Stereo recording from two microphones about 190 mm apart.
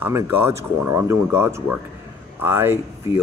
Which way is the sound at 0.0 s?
10° right (ahead or behind).